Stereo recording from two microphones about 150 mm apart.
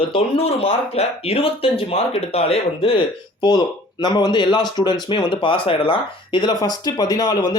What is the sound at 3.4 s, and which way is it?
Speech, 25° left (ahead or behind).